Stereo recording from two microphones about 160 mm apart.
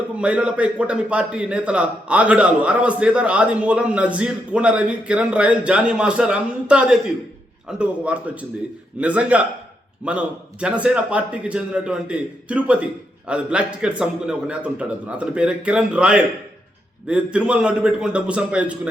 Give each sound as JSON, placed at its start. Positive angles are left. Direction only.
{"t": 0.2, "sound": "a man's voice", "side_deg": -5}